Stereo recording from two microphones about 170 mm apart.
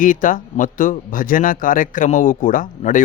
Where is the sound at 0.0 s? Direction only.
50° left (ahead or behind).